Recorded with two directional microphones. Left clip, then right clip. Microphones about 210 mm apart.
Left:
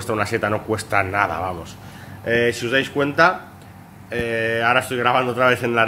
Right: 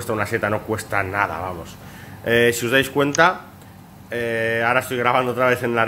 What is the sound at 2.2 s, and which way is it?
Speech, 25° right (ahead or behind).